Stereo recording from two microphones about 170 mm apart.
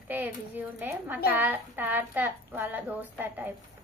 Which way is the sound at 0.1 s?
10° right (ahead or behind).